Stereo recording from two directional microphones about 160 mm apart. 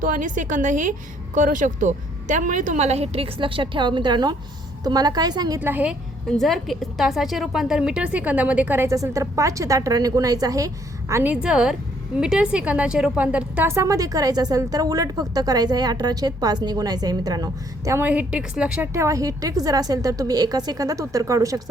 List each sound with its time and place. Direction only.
0.0 s a woman's voice: 55° right (ahead or behind); by 5.5 s 25° right (ahead or behind)
5.5 s a woman's voice: 10° right (ahead or behind)
6.3 s a woman's voice: centre (ahead or behind); by 10.7 s 20° right (ahead or behind)
11.1 s speech: 10° right (ahead or behind)
18.9 s speech: 20° right (ahead or behind)